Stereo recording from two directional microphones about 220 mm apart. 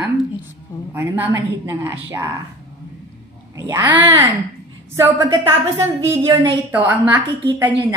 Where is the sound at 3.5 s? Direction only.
15° right (ahead or behind).